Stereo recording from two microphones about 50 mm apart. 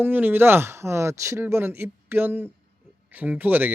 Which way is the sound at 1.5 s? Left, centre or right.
Right.